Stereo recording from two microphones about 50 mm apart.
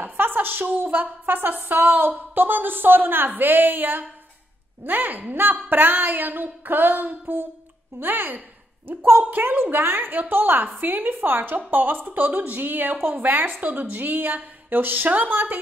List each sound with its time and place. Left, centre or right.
0.0 s a sound: right
0.7 s a woman's voice: right
8.8 s a woman's voice: right